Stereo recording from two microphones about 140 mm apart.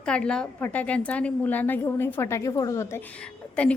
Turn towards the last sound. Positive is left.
turn(degrees=10)  # may be behind; listen again after turning